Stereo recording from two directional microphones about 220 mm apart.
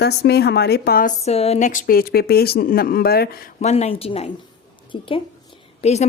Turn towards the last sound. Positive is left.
turn(degrees=30)  # may be behind; listen again after turning